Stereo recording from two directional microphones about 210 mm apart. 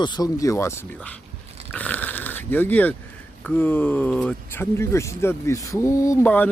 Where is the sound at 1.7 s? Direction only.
5° left (ahead or behind).